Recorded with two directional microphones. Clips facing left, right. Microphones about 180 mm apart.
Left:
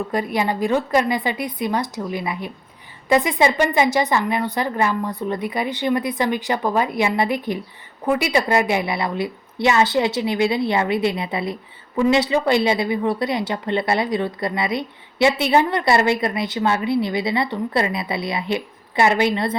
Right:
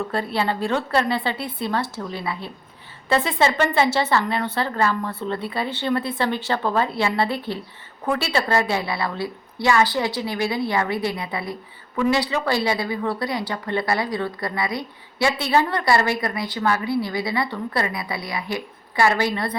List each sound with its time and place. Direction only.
0.1 s a woman's voice: 15° left (ahead or behind)